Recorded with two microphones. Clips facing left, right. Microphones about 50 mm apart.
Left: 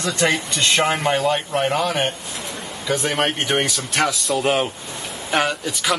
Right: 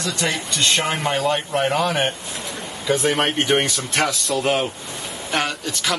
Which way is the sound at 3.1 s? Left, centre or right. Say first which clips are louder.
Right 1 dB; centre.